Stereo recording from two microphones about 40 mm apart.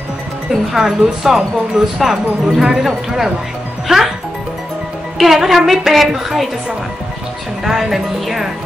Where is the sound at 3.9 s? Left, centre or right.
Centre.